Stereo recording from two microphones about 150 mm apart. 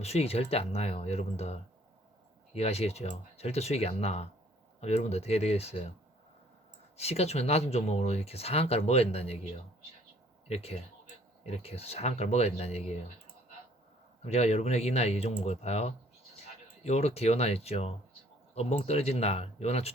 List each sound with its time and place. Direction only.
0.0 s speech: 45° left (ahead or behind)
2.6 s speech: 45° left (ahead or behind)
6.9 s speech: 45° left (ahead or behind)
10.5 s speech: 45° left (ahead or behind)
14.3 s speech: 45° left (ahead or behind)